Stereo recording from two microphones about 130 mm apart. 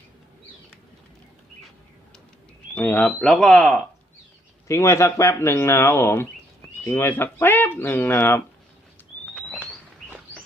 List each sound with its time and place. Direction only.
2.7 s speech: 10° left (ahead or behind)
4.7 s speech: 25° left (ahead or behind)